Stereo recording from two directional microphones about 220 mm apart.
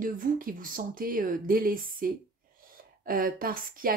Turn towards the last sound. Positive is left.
turn(degrees=-40)  # may be behind; listen again after turning